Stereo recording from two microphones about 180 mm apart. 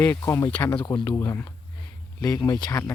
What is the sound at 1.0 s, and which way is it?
Speech, 15° left (ahead or behind).